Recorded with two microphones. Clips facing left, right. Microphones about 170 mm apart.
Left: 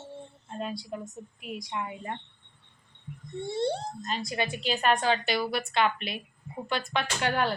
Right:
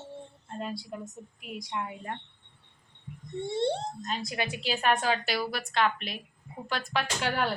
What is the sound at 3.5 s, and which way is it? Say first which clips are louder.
Speech: even; 25° right (ahead or behind).